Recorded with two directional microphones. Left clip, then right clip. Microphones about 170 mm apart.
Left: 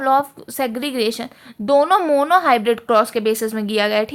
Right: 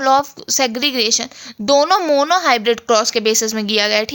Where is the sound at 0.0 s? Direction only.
35° right (ahead or behind).